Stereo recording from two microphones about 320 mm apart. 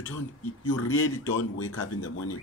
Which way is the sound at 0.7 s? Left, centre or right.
Left.